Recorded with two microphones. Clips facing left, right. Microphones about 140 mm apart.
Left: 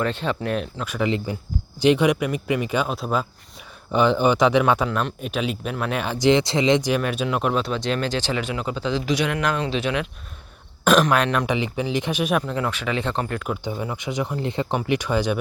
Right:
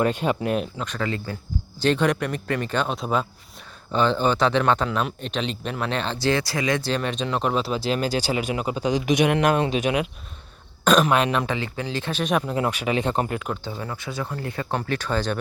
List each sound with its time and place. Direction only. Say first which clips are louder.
0.0 s speech: right 2 dB; 10° right (ahead or behind)
0.9 s a man's voice: left 4 dB; 15° left (ahead or behind)
3.9 s a man's voice: left 3 dB; 15° left (ahead or behind)
4.9 s speech: left 1 dB; centre (ahead or behind)
10.8 s speech: left 1 dB; centre (ahead or behind)
11.4 s a man's voice: left 4 dB; 15° left (ahead or behind)
12.5 s speech: right 2 dB; 20° right (ahead or behind)
13.7 s a man's voice: left 4 dB; 15° left (ahead or behind)